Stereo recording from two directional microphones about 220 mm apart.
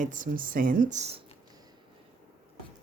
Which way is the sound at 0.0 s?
35° right (ahead or behind).